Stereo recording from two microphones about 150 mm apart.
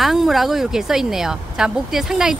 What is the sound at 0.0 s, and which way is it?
A woman's voice, centre (ahead or behind).